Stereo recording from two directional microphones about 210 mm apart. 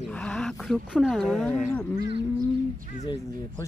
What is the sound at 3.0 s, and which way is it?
Speech, 15° left (ahead or behind).